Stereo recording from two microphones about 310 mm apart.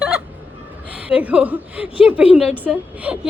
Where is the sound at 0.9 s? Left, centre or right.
Centre.